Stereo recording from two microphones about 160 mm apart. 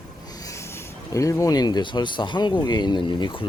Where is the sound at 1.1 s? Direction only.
20° left (ahead or behind).